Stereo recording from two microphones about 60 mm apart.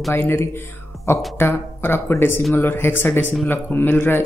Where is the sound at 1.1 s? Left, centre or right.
Left.